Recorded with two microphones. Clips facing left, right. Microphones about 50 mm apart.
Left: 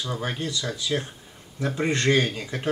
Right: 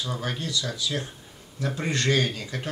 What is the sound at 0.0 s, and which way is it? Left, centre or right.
Speech, centre.